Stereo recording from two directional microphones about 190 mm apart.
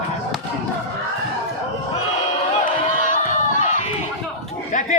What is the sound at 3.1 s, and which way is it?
Run, 40° left (ahead or behind).